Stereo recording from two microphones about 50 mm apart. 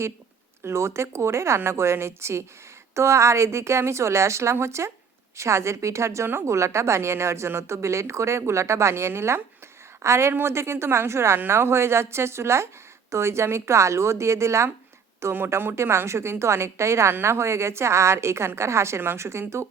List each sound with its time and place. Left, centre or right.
0.6 s a woman's voice: right
11.3 s a woman's voice: right
15.2 s speech: right
15.4 s a woman's voice: right